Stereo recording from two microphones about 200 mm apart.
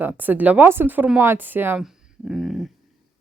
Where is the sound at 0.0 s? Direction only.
10° right (ahead or behind).